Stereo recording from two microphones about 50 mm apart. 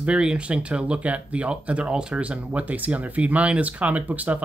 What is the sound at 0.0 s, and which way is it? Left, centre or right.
Speech, centre.